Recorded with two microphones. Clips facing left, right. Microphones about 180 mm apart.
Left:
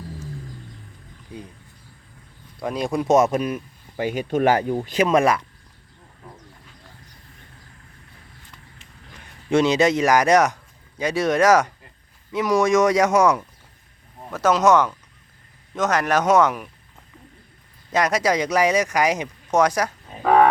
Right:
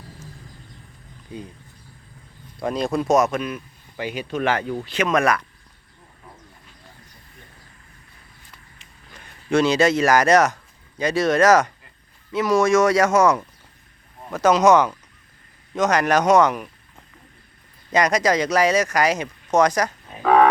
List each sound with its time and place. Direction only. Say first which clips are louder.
2.6 s speech: right 1 dB; 10° left (ahead or behind); by 4.6 s 45° left (ahead or behind)
4.9 s speech: left 2 dB; 35° left (ahead or behind)
9.5 s speech: even; 20° left (ahead or behind)
14.3 s speech: right 2 dB; centre (ahead or behind)
17.9 s speech: right 1 dB; 5° left (ahead or behind)